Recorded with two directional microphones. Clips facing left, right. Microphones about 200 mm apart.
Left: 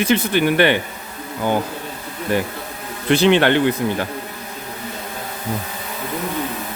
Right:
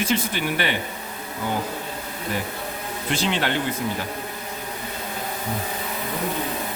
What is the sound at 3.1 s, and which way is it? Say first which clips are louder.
Speech: left 10 dB; 65° left (ahead or behind).